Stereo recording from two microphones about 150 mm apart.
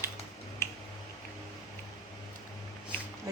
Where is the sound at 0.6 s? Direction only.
15° left (ahead or behind).